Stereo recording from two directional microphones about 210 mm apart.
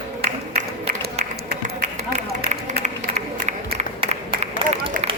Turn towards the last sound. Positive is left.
turn(degrees=-25)  # may be behind; listen again after turning